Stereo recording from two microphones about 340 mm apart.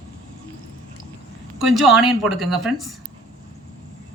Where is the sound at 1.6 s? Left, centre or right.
Centre.